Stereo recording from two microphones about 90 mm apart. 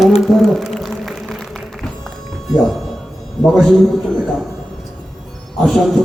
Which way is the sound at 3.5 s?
Centre (ahead or behind).